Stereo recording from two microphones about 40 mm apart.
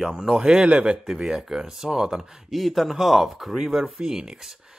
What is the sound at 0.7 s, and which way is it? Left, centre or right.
Speech, right.